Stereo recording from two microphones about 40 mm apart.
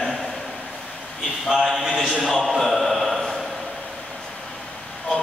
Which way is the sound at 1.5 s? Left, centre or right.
Centre.